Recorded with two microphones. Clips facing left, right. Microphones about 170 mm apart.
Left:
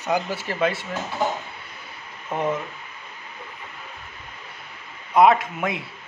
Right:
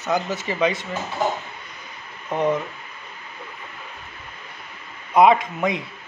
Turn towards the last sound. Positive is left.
turn(degrees=5)  # may be behind; listen again after turning